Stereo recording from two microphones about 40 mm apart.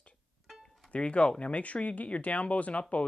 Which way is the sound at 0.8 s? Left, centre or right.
Left.